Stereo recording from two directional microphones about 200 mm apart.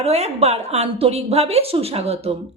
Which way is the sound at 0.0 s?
35° right (ahead or behind).